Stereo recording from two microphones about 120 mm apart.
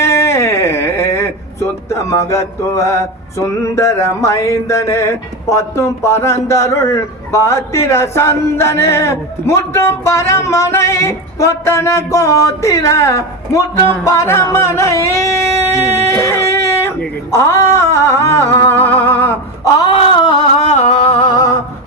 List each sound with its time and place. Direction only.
0.0 s speech: 25° left (ahead or behind)
17.3 s music: 25° left (ahead or behind)
19.8 s a sound: 40° left (ahead or behind)